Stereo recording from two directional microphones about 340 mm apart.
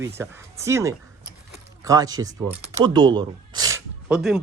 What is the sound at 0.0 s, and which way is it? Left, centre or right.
Speech, centre.